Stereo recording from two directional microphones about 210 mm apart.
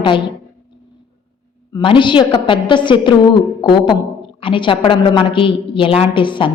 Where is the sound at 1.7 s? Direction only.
25° left (ahead or behind).